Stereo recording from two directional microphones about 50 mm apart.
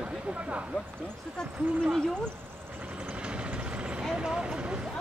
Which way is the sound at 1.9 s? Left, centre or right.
Centre.